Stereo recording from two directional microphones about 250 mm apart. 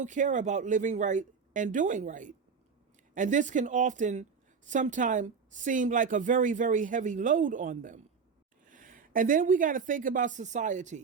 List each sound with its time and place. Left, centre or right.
0.0 s speech: right